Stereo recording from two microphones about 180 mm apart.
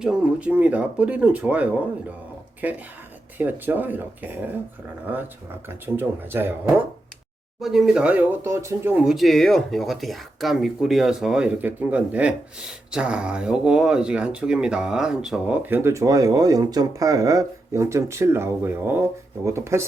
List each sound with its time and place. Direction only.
0.0 s speech: 5° right (ahead or behind)
5.6 s speech: 10° right (ahead or behind)